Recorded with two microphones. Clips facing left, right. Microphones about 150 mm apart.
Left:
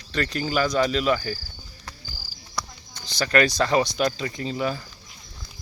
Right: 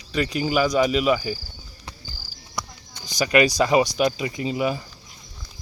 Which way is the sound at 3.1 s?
15° right (ahead or behind).